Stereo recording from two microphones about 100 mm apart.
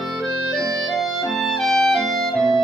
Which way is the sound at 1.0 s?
Centre (ahead or behind).